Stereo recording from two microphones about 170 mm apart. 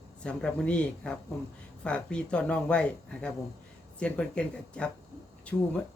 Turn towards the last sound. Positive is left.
turn(degrees=5)  # may be behind; listen again after turning